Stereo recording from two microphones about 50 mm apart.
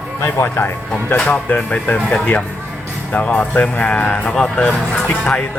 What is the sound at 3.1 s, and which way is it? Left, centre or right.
Speech, left.